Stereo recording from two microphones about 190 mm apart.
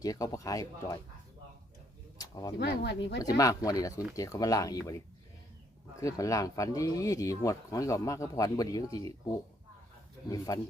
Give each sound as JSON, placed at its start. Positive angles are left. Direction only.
{"t": 0.0, "sound": "speech", "side_deg": 15}
{"t": 2.1, "sound": "a sound", "side_deg": 20}
{"t": 2.6, "sound": "speech", "side_deg": 60}
{"t": 3.2, "sound": "speech", "side_deg": 20}
{"t": 6.0, "sound": "speech", "side_deg": 15}
{"t": 10.2, "sound": "speech", "side_deg": 20}